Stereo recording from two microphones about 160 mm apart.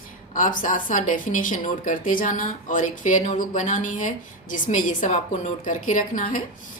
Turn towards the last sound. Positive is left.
turn(degrees=55)  # may be behind; listen again after turning